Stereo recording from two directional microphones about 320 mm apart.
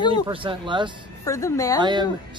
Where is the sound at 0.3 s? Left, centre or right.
Centre.